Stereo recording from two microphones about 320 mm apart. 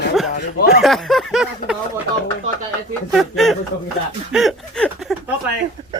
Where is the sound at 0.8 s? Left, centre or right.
Centre.